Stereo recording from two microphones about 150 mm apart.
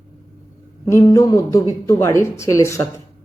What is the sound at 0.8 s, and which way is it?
Speech, 25° left (ahead or behind).